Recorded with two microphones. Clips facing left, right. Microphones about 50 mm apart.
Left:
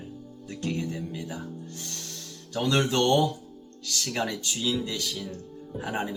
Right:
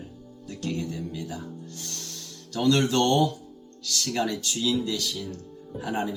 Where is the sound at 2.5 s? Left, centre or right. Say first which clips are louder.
Right 2 dB; centre.